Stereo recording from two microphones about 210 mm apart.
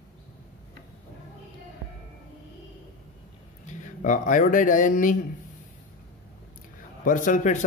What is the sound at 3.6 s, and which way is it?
Speech, 35° left (ahead or behind).